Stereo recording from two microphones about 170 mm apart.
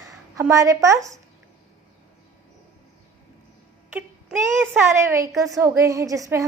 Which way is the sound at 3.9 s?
10° right (ahead or behind).